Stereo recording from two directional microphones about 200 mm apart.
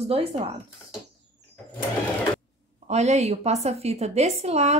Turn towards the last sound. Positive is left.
turn(degrees=-35)  # may be behind; listen again after turning